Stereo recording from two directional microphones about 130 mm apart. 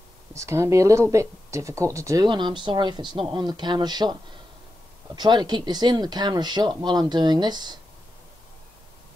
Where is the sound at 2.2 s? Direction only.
35° right (ahead or behind).